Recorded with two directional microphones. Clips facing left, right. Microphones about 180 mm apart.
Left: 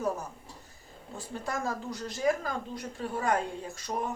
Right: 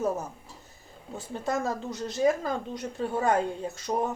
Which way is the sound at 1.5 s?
20° right (ahead or behind).